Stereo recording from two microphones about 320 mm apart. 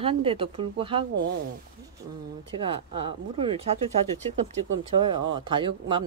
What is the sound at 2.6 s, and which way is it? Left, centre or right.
Speech, centre.